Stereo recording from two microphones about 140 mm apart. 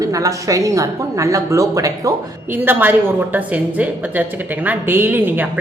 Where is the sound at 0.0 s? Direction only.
25° right (ahead or behind).